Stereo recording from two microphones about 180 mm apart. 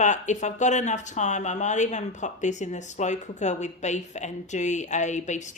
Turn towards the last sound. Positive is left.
turn(degrees=40)  # may be behind; listen again after turning